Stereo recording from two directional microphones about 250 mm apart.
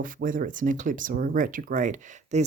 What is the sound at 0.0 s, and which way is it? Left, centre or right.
Speech, right.